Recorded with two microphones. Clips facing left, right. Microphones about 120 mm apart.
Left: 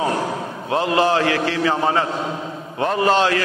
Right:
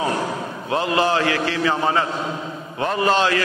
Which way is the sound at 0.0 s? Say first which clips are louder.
Left 1 dB; 40° left (ahead or behind).